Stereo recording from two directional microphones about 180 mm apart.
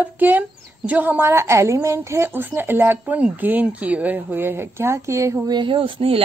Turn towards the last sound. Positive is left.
turn(degrees=-30)  # may be behind; listen again after turning